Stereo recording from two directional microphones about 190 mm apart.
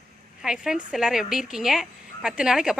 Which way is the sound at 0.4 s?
5° right (ahead or behind).